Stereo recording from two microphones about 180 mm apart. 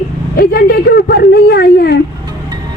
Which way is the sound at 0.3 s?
60° left (ahead or behind).